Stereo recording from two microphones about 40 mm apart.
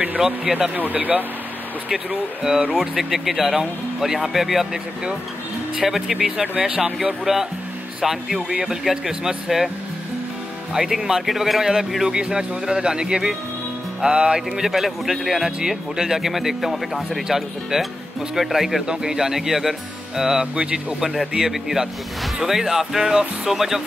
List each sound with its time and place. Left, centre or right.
0.2 s speech: centre
0.7 s speech: right
2.7 s speech: centre
5.8 s speech: centre
6.6 s music: centre
7.0 s speech: centre
10.7 s speech: centre
11.2 s speech: centre
12.0 s speech: centre
14.0 s music: right
14.6 s speech: centre
18.9 s speech: centre